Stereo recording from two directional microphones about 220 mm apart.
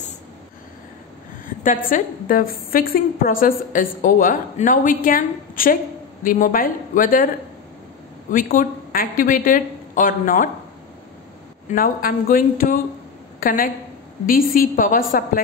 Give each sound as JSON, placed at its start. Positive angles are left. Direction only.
{"t": 1.6, "sound": "a woman's voice", "side_deg": 40}
{"t": 8.3, "sound": "a woman's voice", "side_deg": 40}
{"t": 11.7, "sound": "a woman's voice", "side_deg": 40}